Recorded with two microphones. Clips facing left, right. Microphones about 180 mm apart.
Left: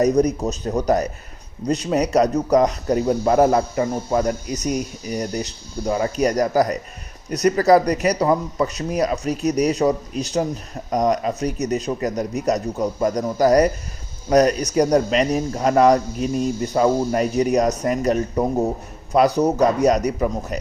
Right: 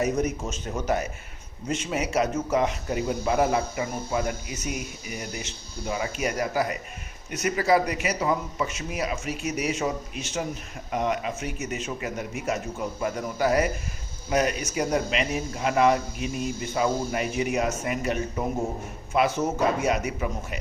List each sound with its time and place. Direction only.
0.0 s speech: 35° left (ahead or behind)